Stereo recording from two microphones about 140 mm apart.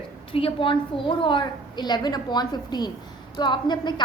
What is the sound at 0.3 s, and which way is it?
A woman's voice, 40° left (ahead or behind).